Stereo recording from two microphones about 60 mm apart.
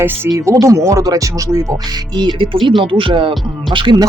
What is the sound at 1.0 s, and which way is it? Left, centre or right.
Speech, right.